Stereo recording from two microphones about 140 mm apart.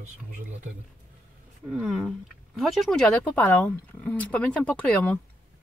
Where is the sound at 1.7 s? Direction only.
5° right (ahead or behind); by 5.2 s 10° left (ahead or behind).